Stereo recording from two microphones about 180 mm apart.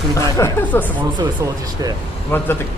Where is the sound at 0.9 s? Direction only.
25° right (ahead or behind).